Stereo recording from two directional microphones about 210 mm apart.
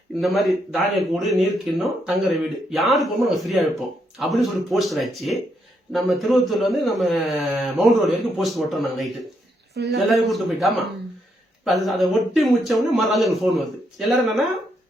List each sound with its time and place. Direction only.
0.2 s speech: centre (ahead or behind)
9.7 s speech: 55° right (ahead or behind)
10.1 s speech: centre (ahead or behind)